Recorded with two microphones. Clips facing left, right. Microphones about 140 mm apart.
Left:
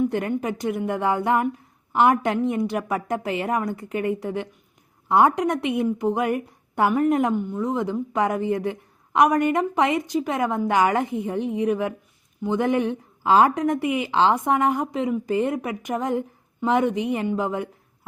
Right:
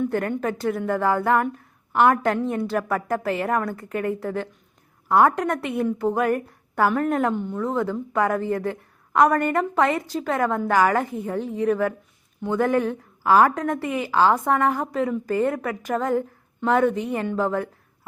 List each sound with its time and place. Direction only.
0.0 s a woman's voice: 15° left (ahead or behind)